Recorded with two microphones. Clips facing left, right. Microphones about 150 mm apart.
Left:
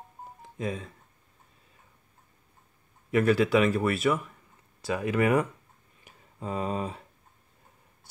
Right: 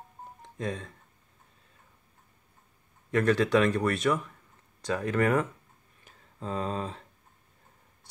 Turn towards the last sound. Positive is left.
turn(degrees=10)  # may be behind; listen again after turning